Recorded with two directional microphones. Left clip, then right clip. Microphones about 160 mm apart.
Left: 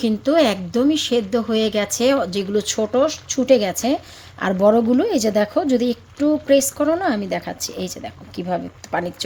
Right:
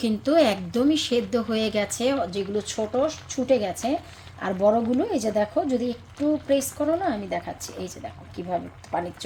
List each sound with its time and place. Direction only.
0.0 s a woman's voice: 25° left (ahead or behind)
2.0 s speech: 45° left (ahead or behind)